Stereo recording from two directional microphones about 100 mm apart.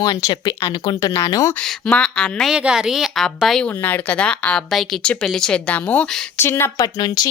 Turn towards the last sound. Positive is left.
turn(degrees=40)  # may be behind; listen again after turning